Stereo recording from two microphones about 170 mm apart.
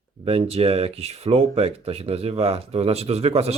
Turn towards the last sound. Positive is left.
turn(degrees=-35)  # may be behind; listen again after turning